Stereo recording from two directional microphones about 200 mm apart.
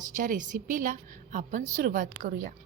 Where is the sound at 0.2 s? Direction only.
40° right (ahead or behind).